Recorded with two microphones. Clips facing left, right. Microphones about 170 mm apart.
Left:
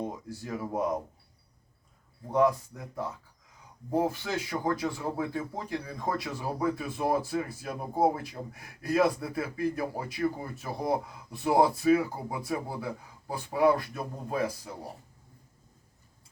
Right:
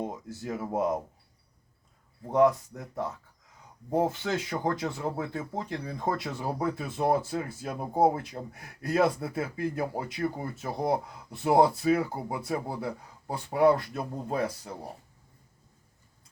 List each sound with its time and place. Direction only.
0.3 s speech: 25° right (ahead or behind)
3.9 s speech: 25° right (ahead or behind)